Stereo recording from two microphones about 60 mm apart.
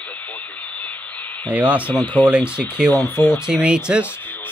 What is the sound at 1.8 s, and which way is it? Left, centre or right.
Speech, left.